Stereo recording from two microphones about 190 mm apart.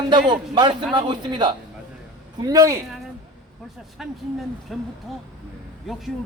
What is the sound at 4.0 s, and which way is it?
Speech, centre (ahead or behind).